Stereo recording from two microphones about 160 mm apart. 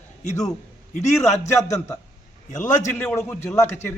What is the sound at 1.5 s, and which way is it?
A man's voice, 20° left (ahead or behind).